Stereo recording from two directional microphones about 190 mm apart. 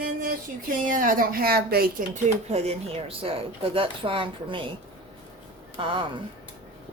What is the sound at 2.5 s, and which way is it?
Speech, 35° right (ahead or behind).